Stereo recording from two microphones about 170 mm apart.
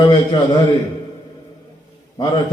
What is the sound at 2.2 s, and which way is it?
Speech, 25° left (ahead or behind).